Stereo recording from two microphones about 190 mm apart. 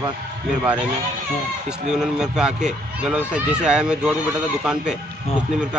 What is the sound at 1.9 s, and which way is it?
Speech, 5° right (ahead or behind).